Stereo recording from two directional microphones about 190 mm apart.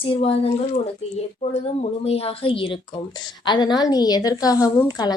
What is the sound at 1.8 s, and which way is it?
Speech, 35° left (ahead or behind).